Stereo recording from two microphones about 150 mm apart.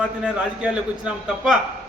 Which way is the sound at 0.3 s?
5° right (ahead or behind).